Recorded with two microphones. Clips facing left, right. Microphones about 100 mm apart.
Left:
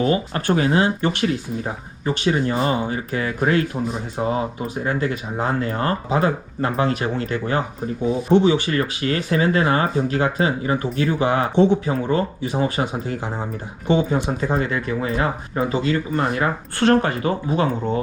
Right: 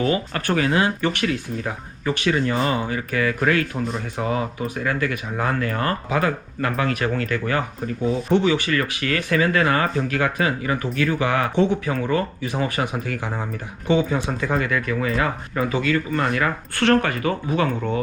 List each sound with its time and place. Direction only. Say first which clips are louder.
0.3 s speech: left 2 dB; 25° left (ahead or behind)
4.8 s speech: left 2 dB; 25° left (ahead or behind)
13.9 s speech: left 1 dB; 25° left (ahead or behind)